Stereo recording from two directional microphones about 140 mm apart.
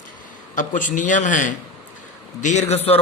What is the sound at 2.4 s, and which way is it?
Speech, 55° left (ahead or behind).